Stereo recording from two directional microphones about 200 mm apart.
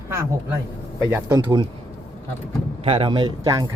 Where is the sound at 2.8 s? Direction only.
25° right (ahead or behind).